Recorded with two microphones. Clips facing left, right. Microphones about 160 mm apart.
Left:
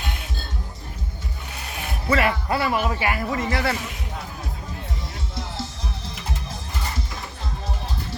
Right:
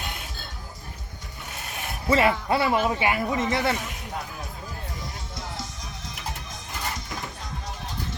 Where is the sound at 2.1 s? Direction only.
25° right (ahead or behind).